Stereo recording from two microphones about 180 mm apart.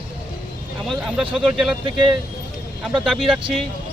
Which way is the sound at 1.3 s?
Centre (ahead or behind).